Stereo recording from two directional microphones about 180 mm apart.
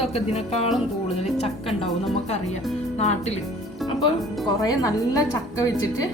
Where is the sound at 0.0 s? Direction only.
35° left (ahead or behind).